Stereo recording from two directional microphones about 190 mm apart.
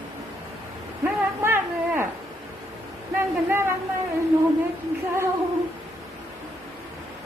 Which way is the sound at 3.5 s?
10° right (ahead or behind).